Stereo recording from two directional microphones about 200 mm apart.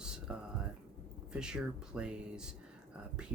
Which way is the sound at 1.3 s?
5° right (ahead or behind).